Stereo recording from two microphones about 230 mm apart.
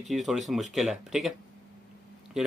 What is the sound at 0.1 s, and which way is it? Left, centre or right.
Speech, centre.